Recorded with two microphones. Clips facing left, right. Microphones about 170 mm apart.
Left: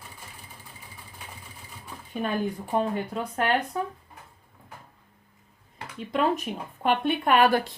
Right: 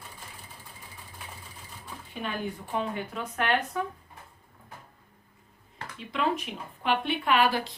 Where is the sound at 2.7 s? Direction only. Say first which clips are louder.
Left 5 dB; 40° left (ahead or behind).